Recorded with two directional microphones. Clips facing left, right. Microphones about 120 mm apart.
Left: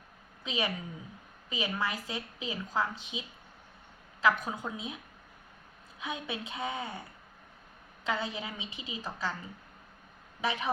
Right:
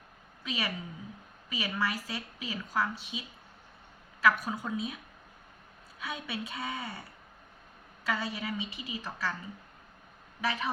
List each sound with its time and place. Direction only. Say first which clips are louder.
0.4 s a woman's voice: left 2 dB; 20° left (ahead or behind)
6.0 s a woman's voice: even; 20° left (ahead or behind)
8.0 s a woman's voice: even; 20° left (ahead or behind)
10.4 s a woman's voice: even; 20° left (ahead or behind)